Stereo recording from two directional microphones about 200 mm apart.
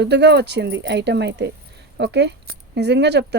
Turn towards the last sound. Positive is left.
turn(degrees=-55)  # may be behind; listen again after turning